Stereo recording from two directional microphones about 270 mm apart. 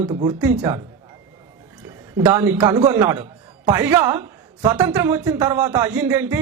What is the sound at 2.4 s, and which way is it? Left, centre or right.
A man's voice, centre.